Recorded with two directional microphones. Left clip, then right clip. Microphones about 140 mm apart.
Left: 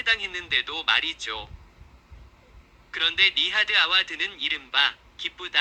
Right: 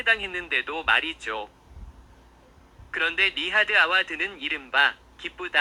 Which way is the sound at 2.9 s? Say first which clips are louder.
Left 2 dB; 30° right (ahead or behind).